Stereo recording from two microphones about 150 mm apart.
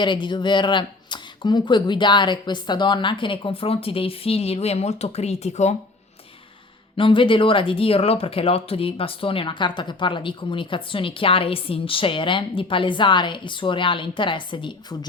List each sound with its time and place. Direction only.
0.0 s speech: 30° left (ahead or behind); by 5.7 s 50° left (ahead or behind)
6.9 s speech: 35° left (ahead or behind)